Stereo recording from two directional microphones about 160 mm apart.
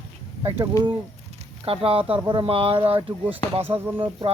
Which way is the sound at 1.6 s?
35° right (ahead or behind).